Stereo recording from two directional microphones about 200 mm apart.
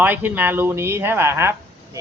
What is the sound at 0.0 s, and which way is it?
Speech, 10° right (ahead or behind).